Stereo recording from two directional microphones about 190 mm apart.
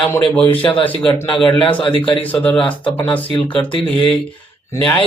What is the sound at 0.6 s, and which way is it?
Speech, 25° left (ahead or behind).